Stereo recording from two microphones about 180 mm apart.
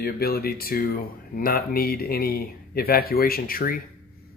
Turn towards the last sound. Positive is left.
turn(degrees=55)  # may be behind; listen again after turning